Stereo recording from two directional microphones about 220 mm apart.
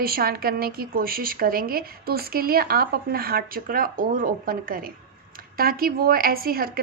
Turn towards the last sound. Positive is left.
turn(degrees=-40)  # may be behind; listen again after turning